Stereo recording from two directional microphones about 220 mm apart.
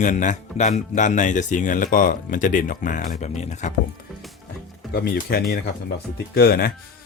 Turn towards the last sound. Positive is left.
turn(degrees=45)  # may be behind; listen again after turning